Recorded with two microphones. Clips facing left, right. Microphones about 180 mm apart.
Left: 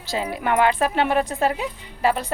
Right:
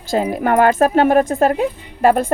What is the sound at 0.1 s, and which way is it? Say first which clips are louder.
A woman's voice: right 7 dB; 50° right (ahead or behind).